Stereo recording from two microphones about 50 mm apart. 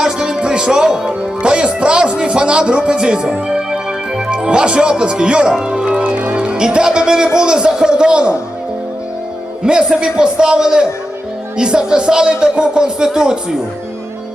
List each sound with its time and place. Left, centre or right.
0.0 s a man's voice: centre
9.6 s a man's voice: centre